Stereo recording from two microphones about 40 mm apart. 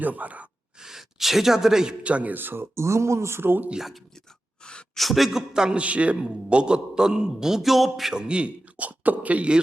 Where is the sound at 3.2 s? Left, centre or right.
Right.